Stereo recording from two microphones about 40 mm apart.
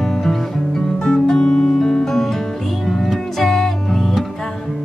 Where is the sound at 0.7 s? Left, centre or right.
Centre.